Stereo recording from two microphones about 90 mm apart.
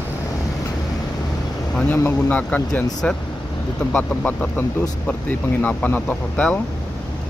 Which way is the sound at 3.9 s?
15° left (ahead or behind).